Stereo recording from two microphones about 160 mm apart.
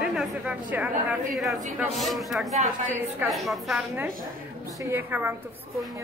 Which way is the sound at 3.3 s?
Centre (ahead or behind).